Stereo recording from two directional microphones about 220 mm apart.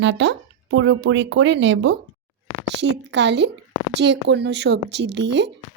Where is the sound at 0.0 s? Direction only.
55° right (ahead or behind).